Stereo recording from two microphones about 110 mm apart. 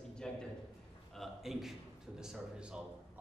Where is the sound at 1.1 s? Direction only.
Centre (ahead or behind).